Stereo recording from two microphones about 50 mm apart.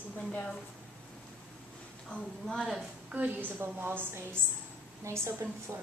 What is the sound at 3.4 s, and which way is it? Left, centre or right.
Speech, right.